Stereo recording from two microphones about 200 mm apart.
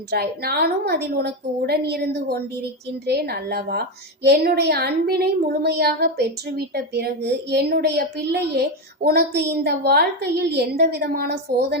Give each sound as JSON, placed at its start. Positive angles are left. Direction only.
{"t": 0.1, "sound": "a woman's voice", "side_deg": -50}